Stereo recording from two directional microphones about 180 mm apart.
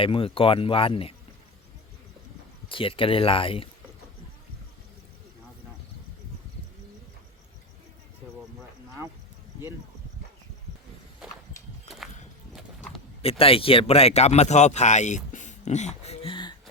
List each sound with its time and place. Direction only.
0.0 s speech: 30° left (ahead or behind)
2.6 s speech: 30° left (ahead or behind)
11.2 s a sound: 5° right (ahead or behind)
13.4 s speech: 30° left (ahead or behind)